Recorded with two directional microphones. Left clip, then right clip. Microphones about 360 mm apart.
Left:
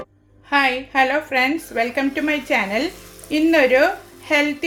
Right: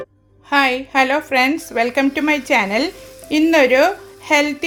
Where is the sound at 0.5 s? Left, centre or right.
Centre.